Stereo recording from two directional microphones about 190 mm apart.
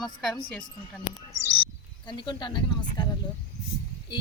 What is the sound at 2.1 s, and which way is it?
Speech, 25° left (ahead or behind).